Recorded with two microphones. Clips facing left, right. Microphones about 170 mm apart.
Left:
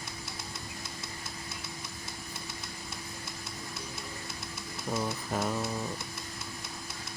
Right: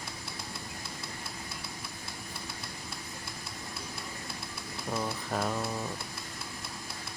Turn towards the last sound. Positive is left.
turn(degrees=0)  # may be behind; listen again after turning